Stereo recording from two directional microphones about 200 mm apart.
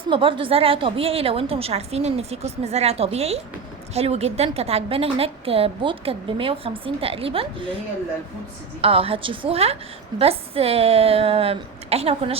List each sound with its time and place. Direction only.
0.1 s a woman's voice: 25° right (ahead or behind)
8.8 s a woman's voice: 30° right (ahead or behind)